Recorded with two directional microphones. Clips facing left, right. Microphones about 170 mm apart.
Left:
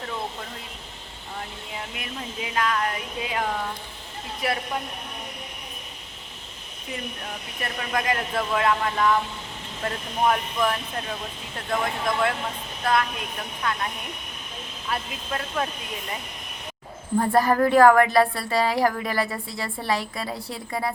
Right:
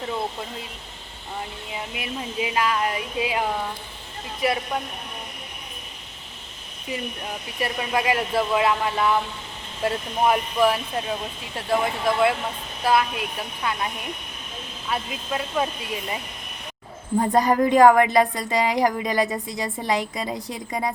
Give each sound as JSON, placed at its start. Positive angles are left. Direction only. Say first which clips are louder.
{"t": 1.7, "sound": "a woman's voice", "louder": "right 4 dB", "side_deg": -10}
{"t": 4.4, "sound": "speech", "louder": "right 4 dB", "side_deg": 0}
{"t": 7.6, "sound": "a woman's voice", "louder": "right 4 dB", "side_deg": -10}
{"t": 14.8, "sound": "a woman's voice", "louder": "right 2 dB", "side_deg": -5}
{"t": 17.2, "sound": "a woman's voice", "louder": "right 1 dB", "side_deg": -15}